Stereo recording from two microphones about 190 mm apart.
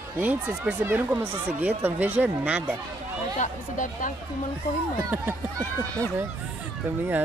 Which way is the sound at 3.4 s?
40° left (ahead or behind).